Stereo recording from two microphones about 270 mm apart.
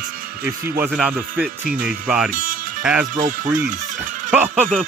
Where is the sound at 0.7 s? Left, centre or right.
Centre.